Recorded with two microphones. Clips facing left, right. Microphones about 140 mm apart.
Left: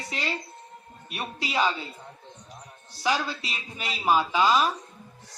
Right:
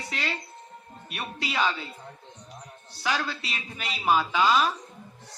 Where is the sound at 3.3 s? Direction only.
35° left (ahead or behind).